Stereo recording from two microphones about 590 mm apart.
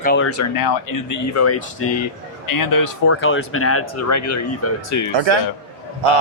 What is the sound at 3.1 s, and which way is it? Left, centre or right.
Speech, left.